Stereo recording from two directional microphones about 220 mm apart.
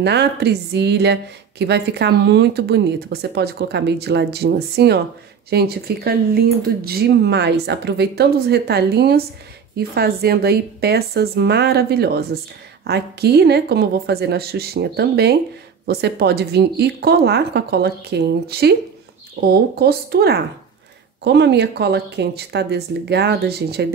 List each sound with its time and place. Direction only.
0.0 s a woman's voice: 50° right (ahead or behind)